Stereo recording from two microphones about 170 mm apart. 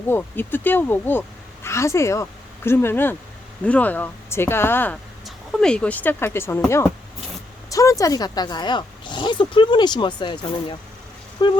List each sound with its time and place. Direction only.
0.1 s a woman's voice: 10° left (ahead or behind)
7.7 s speech: 20° left (ahead or behind)